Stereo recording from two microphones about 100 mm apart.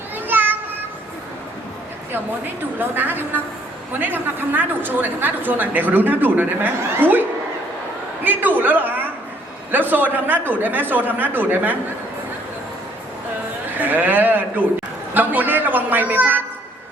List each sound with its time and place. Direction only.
0.3 s children playing: 20° right (ahead or behind)
2.7 s a woman's voice: 20° right (ahead or behind)
13.7 s a woman's voice: 20° right (ahead or behind)